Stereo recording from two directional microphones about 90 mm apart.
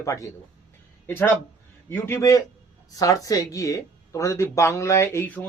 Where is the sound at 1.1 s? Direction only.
20° left (ahead or behind).